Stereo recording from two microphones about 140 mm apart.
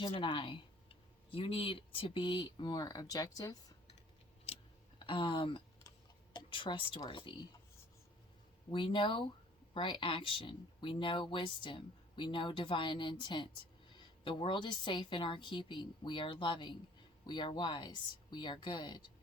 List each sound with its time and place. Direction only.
0.0 s speech: 35° left (ahead or behind)
4.5 s a sound: 45° left (ahead or behind)
4.9 s speech: 35° left (ahead or behind)
8.7 s speech: 35° left (ahead or behind)